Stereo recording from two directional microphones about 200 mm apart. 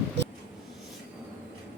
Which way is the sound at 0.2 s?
60° right (ahead or behind).